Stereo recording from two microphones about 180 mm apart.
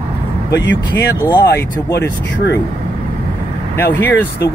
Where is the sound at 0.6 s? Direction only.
85° left.